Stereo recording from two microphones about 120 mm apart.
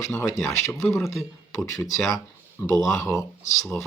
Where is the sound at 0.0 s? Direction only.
25° left (ahead or behind).